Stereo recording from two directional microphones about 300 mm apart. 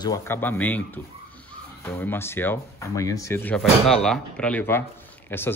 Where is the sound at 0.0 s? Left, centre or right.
Centre.